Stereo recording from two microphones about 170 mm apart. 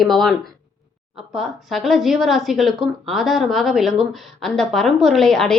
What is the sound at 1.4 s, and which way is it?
A woman's voice, centre (ahead or behind).